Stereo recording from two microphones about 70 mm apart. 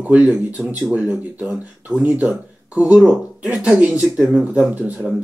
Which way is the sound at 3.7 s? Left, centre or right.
Centre.